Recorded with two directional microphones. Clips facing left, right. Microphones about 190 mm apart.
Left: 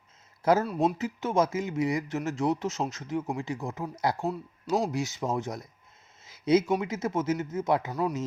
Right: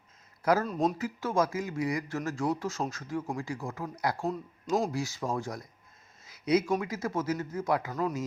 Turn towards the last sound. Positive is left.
turn(degrees=25)  # may be behind; listen again after turning